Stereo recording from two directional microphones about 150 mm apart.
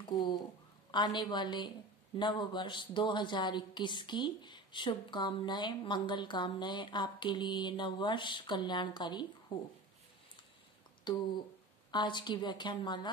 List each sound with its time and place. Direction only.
0.0 s a sound: 30° left (ahead or behind)
0.9 s a woman's voice: 30° left (ahead or behind)
11.1 s a woman's voice: 30° left (ahead or behind)